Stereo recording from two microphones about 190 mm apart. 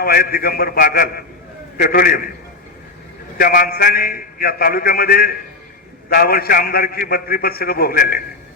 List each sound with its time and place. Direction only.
0.0 s a man's voice: 50° left (ahead or behind)
3.3 s a man's voice: 50° left (ahead or behind)